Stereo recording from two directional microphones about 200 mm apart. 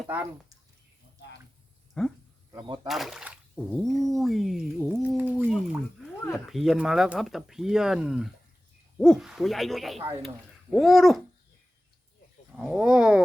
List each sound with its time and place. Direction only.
0.0 s speech: 5° right (ahead or behind)
2.0 s speech: 5° left (ahead or behind)
2.5 s speech: 20° right (ahead or behind)
2.8 s a sound: centre (ahead or behind)
3.7 s speech: centre (ahead or behind)
12.5 s speech: 5° right (ahead or behind)